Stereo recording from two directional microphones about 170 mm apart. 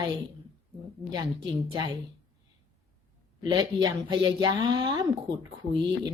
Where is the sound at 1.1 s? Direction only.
25° right (ahead or behind).